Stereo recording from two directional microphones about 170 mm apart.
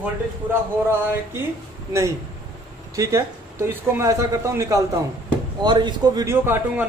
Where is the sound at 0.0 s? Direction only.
15° right (ahead or behind).